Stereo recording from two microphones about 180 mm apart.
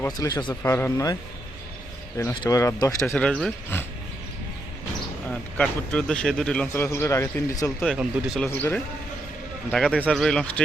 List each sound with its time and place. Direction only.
0.0 s a man's voice: 20° left (ahead or behind)
2.3 s a man's voice: 20° left (ahead or behind)
5.3 s a man's voice: 5° left (ahead or behind)
7.8 s speech: centre (ahead or behind)
8.4 s a man's voice: 10° left (ahead or behind)
9.7 s speech: centre (ahead or behind)